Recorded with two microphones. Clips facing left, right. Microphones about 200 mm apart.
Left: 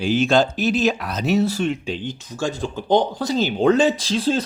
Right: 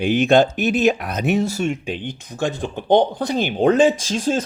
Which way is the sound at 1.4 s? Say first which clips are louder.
Left 1 dB; 45° right (ahead or behind).